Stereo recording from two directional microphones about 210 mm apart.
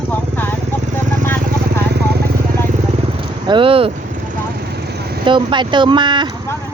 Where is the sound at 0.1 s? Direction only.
10° left (ahead or behind).